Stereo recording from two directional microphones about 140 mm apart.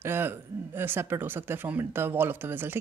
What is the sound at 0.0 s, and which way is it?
Speech, 15° right (ahead or behind).